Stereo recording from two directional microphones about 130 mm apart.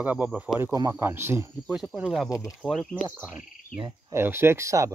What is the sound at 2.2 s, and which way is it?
Speech, 25° left (ahead or behind).